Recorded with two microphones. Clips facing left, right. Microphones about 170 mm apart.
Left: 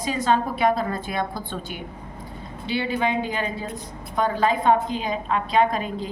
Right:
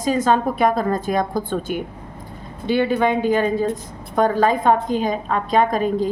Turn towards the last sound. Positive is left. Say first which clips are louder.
# right 4 dB
turn(degrees=-45)  # may be behind; listen again after turning